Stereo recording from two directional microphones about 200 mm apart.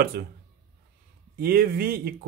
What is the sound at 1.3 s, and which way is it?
Speech, 50° right (ahead or behind).